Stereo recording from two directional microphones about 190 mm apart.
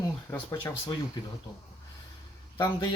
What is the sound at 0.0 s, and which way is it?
Speech, 15° left (ahead or behind).